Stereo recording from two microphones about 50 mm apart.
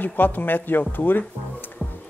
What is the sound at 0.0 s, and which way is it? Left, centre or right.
Speech, left.